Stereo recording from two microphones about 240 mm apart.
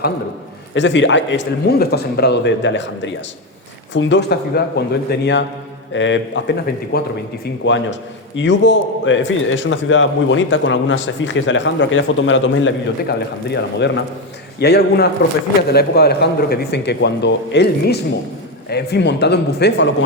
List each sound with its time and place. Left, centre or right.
0.7 s a man's voice: left